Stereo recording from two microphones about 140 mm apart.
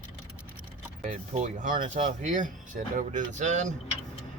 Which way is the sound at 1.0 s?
55° right (ahead or behind).